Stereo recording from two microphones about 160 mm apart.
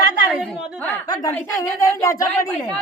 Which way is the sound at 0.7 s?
10° left (ahead or behind).